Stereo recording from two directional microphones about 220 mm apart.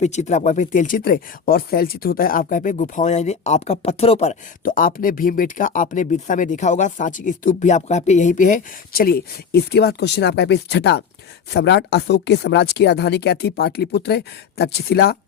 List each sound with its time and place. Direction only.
0.0 s speech: 30° left (ahead or behind)